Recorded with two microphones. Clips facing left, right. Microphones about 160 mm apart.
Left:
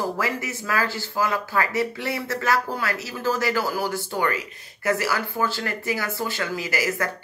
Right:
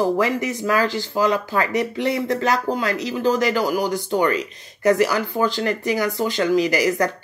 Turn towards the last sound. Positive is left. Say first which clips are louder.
# right 7 dB
turn(degrees=-20)  # may be behind; listen again after turning